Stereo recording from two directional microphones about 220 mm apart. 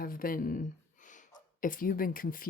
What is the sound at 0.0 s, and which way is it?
A woman's voice, 40° left (ahead or behind).